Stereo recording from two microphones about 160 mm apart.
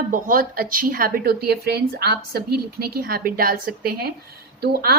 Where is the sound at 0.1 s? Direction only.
60° right (ahead or behind).